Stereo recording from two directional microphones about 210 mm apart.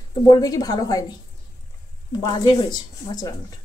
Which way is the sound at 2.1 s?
20° left (ahead or behind).